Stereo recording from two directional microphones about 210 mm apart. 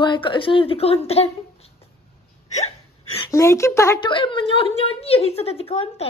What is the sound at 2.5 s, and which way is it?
Hiccup, 30° left (ahead or behind).